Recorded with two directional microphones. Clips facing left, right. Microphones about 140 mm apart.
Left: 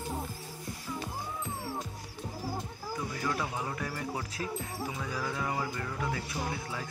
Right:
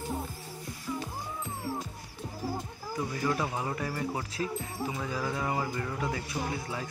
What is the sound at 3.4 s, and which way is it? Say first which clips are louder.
Speech: right 3 dB; 15° right (ahead or behind).